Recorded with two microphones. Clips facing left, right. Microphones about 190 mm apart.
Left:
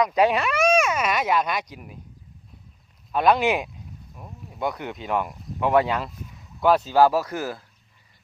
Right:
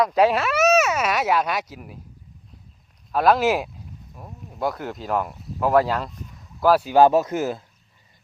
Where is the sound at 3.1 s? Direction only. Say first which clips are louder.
Right 2 dB; centre (ahead or behind).